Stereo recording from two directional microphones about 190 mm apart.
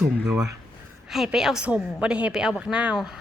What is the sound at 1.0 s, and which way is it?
A woman's voice, centre (ahead or behind).